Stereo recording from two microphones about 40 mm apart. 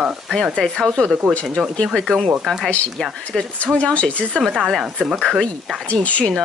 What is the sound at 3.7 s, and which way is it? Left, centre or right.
Speech, left.